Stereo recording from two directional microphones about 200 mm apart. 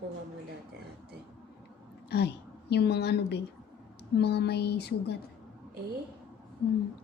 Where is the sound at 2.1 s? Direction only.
55° left (ahead or behind).